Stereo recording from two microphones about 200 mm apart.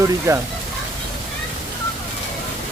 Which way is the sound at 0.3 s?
15° right (ahead or behind).